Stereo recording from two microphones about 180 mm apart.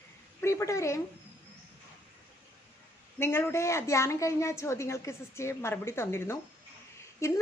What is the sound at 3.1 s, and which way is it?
A woman's voice, 15° left (ahead or behind).